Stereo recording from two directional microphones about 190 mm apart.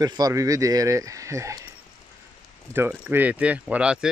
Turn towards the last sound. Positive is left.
turn(degrees=-5)  # may be behind; listen again after turning